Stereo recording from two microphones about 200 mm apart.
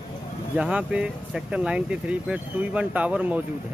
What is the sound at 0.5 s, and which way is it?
Speech, 5° right (ahead or behind).